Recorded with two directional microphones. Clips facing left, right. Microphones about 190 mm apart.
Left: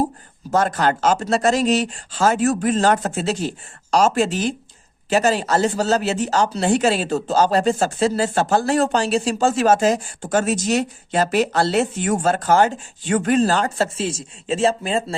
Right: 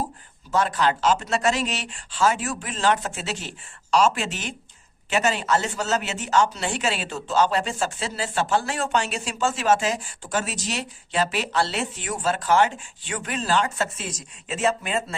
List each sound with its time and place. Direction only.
0.5 s speech: 45° left (ahead or behind)